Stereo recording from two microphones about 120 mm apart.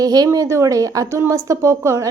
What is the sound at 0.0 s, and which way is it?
A woman's voice, 30° right (ahead or behind).